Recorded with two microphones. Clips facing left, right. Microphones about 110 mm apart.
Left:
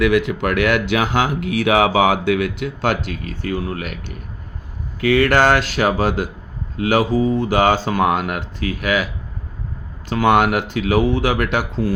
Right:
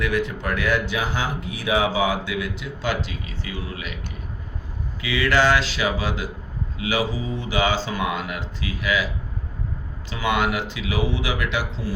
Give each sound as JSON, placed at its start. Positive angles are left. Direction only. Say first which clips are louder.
{"t": 0.0, "sound": "speech", "louder": "left 7 dB", "side_deg": 90}
{"t": 4.9, "sound": "speech", "louder": "left 6 dB", "side_deg": 55}
{"t": 10.1, "sound": "speech", "louder": "left 8 dB", "side_deg": 55}